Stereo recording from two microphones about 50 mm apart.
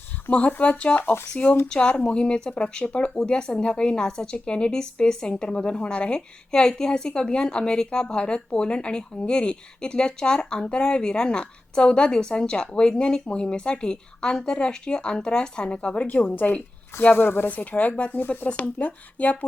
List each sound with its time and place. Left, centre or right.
0.3 s a woman's voice: left
16.0 s a woman's voice: left
17.5 s a woman's voice: left
18.1 s a woman's voice: left
18.4 s a woman's voice: left